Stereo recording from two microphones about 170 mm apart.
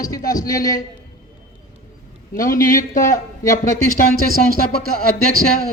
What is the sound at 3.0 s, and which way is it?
Speech, 20° left (ahead or behind).